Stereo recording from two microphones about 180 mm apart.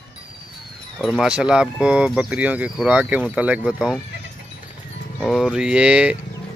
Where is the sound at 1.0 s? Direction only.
Centre (ahead or behind).